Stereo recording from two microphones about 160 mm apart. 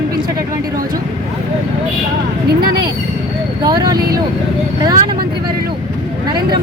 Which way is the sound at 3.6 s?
25° right (ahead or behind).